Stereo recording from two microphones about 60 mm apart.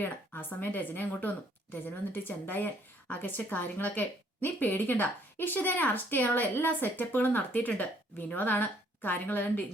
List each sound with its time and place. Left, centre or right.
0.0 s a woman's voice: left